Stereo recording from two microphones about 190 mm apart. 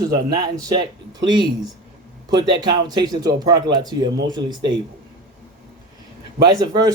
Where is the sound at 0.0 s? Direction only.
20° right (ahead or behind).